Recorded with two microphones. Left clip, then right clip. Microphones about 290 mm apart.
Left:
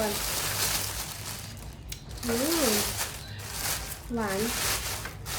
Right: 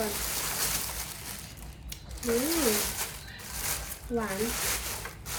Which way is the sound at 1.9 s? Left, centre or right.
Centre.